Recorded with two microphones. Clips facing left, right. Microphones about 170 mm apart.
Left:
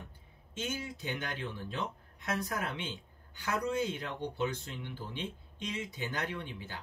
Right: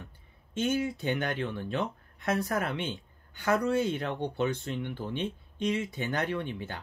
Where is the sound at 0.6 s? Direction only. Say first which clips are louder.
Right 10 dB; 60° right (ahead or behind).